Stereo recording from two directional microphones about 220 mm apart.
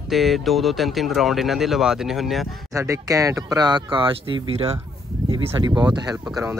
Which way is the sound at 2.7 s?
15° right (ahead or behind).